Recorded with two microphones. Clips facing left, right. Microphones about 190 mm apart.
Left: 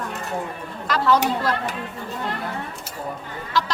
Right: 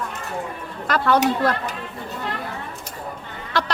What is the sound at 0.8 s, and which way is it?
Speech, 55° right (ahead or behind).